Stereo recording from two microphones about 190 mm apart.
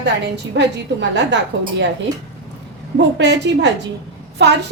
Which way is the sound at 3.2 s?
65° right (ahead or behind).